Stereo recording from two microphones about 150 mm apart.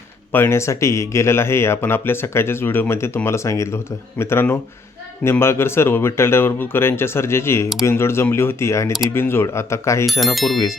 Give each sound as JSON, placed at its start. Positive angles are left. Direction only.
{"t": 0.3, "sound": "speech", "side_deg": 15}
{"t": 10.1, "sound": "speech", "side_deg": 0}